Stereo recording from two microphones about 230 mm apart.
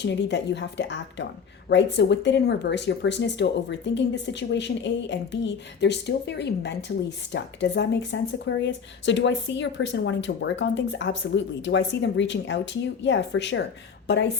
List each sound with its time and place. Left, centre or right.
0.0 s speech: left